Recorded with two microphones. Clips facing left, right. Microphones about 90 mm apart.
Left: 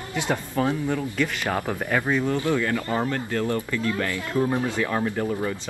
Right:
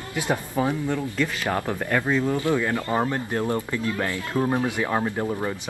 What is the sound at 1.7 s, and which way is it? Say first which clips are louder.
Speech: even; 10° left (ahead or behind).